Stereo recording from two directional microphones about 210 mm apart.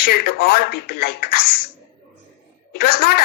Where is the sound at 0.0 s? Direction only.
45° left (ahead or behind).